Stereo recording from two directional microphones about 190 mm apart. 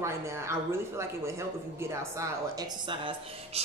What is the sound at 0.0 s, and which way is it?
A woman's voice, 15° right (ahead or behind).